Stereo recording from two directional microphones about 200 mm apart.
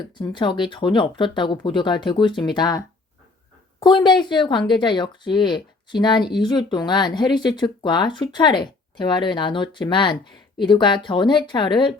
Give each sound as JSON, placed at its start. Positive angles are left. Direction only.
{"t": 0.0, "sound": "speech", "side_deg": 25}